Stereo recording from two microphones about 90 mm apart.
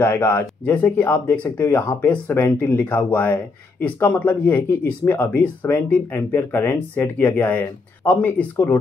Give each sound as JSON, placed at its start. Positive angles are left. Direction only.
{"t": 0.0, "sound": "speech", "side_deg": 25}